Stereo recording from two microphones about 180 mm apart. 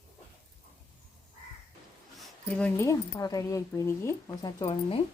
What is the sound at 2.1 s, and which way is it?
Speech, 10° left (ahead or behind).